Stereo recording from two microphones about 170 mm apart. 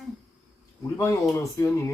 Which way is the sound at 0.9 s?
15° left (ahead or behind).